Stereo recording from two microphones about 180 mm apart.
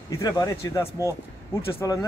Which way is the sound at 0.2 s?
20° left (ahead or behind).